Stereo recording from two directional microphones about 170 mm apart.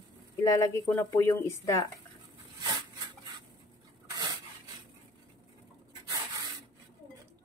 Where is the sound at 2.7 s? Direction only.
25° right (ahead or behind).